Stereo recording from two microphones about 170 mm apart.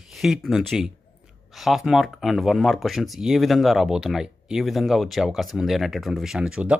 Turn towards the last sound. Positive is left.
turn(degrees=-5)  # may be behind; listen again after turning